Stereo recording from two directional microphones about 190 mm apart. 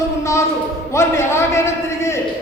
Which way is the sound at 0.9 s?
15° left (ahead or behind).